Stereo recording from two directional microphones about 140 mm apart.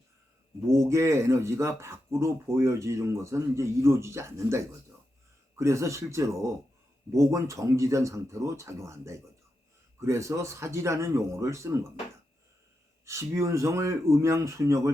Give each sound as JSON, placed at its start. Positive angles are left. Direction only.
{"t": 0.7, "sound": "speech", "side_deg": -20}
{"t": 13.1, "sound": "speech", "side_deg": -20}